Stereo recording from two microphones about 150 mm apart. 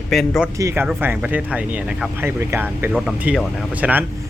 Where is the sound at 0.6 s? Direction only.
20° right (ahead or behind).